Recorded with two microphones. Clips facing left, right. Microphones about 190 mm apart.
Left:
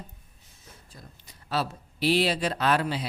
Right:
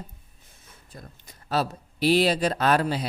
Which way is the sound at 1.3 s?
45° right (ahead or behind).